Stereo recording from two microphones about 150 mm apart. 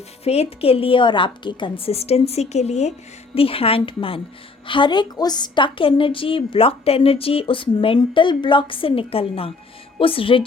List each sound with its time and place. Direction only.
0.3 s a woman's voice: 40° left (ahead or behind)